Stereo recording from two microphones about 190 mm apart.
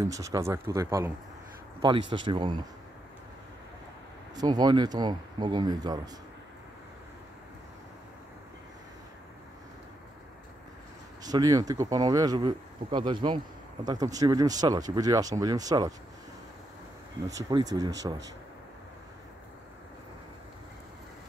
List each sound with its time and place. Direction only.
0.0 s speech: 15° right (ahead or behind)
1.8 s speech: 25° right (ahead or behind)
4.4 s speech: 20° right (ahead or behind)
11.2 s speech: 20° right (ahead or behind)
17.5 s speech: 20° right (ahead or behind)